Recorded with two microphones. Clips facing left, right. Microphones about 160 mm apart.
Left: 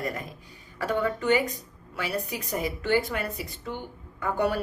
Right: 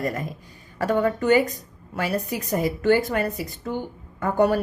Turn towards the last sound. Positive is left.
turn(degrees=-45)  # may be behind; listen again after turning